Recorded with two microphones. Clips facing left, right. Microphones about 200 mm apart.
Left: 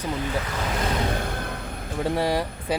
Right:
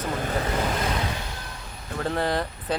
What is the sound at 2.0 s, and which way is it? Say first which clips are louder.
Speech: left 2 dB; 10° left (ahead or behind).